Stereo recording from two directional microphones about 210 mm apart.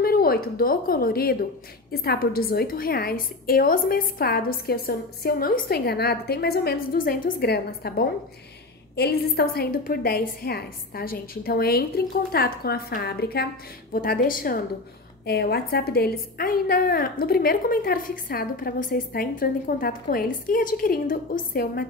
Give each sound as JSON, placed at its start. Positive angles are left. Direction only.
{"t": 0.0, "sound": "a woman's voice", "side_deg": 45}